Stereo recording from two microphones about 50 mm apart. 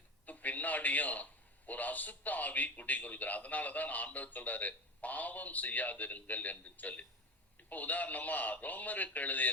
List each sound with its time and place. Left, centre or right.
0.3 s a man's voice: left